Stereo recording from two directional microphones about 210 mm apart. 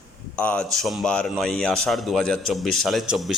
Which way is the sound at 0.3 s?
5° left (ahead or behind).